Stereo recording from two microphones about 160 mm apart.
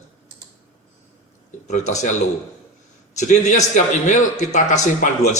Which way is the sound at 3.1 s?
45° left (ahead or behind).